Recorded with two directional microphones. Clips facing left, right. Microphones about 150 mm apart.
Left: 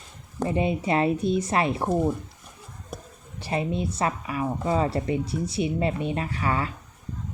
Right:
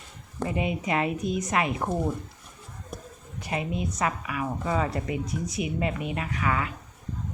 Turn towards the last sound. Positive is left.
turn(degrees=30)  # may be behind; listen again after turning